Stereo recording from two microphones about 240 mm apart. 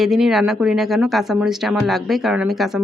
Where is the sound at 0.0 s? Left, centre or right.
Centre.